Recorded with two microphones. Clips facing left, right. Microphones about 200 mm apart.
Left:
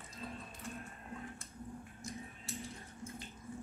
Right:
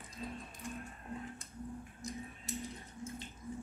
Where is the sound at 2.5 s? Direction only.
20° right (ahead or behind).